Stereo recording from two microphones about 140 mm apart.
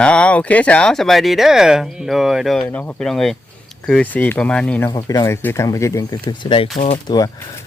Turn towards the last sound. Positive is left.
turn(degrees=25)  # may be behind; listen again after turning